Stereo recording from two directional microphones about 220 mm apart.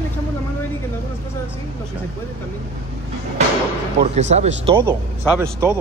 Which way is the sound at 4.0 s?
30° right (ahead or behind).